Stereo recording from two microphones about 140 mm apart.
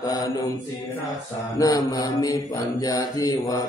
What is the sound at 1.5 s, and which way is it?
Mantra, 25° left (ahead or behind).